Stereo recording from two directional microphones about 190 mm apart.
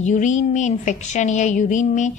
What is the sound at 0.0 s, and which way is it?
A woman's voice, 40° left (ahead or behind).